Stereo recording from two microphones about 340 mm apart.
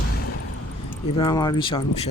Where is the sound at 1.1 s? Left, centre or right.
Centre.